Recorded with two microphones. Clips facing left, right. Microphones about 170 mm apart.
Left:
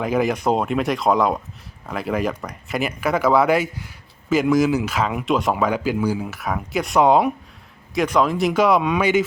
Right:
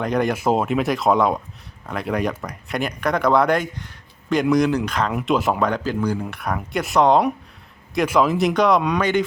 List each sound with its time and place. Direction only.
0.0 s speech: 5° left (ahead or behind)